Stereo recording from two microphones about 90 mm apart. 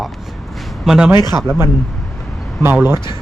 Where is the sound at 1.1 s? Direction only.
50° left (ahead or behind).